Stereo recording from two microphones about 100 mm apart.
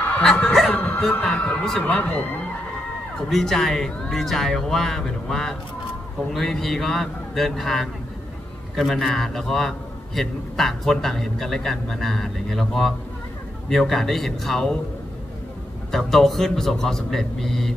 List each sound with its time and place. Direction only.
0.2 s speech: 5° left (ahead or behind)
1.9 s speech: 15° left (ahead or behind)
3.2 s a man's voice: 5° left (ahead or behind)
15.9 s a man's voice: centre (ahead or behind)